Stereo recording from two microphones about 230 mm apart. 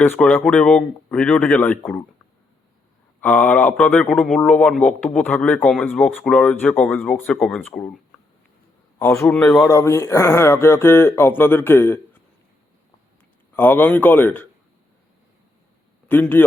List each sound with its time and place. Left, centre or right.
0.0 s a man's voice: centre
3.2 s a man's voice: centre
9.0 s speech: centre
13.6 s speech: centre
16.0 s a man's voice: centre